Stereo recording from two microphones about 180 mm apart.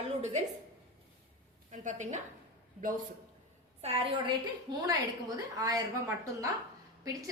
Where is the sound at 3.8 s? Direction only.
35° right (ahead or behind).